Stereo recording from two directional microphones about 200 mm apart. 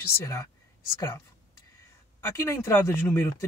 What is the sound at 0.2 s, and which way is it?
Speech, 15° left (ahead or behind).